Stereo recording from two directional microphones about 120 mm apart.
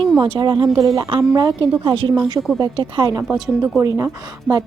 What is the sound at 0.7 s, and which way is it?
Speech, 30° right (ahead or behind).